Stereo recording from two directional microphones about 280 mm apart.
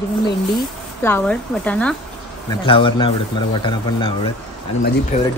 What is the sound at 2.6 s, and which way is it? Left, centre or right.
A man's voice, centre.